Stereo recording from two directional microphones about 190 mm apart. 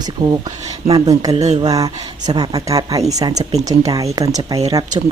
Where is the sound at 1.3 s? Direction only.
35° right (ahead or behind).